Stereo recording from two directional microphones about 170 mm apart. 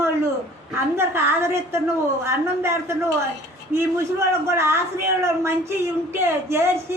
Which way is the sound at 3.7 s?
15° right (ahead or behind).